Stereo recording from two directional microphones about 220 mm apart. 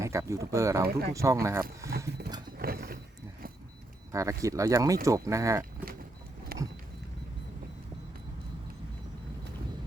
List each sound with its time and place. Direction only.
0.0 s speech: 15° right (ahead or behind)
2.0 s roaring cats: 45° right (ahead or behind)
2.6 s a sound: 45° right (ahead or behind)
4.1 s speech: 15° right (ahead or behind)
6.5 s vehicle: 40° right (ahead or behind)